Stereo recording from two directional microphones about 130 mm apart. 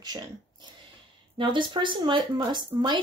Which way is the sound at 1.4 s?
40° right (ahead or behind).